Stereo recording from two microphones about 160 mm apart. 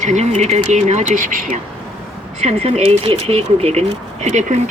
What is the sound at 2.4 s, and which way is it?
Speech, 40° right (ahead or behind).